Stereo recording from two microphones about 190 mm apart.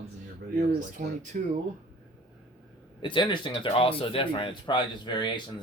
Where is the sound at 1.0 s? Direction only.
45° right (ahead or behind).